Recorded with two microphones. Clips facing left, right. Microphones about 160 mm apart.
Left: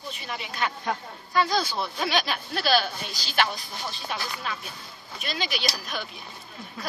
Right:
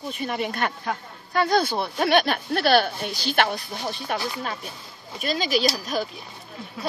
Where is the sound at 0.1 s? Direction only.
50° right (ahead or behind).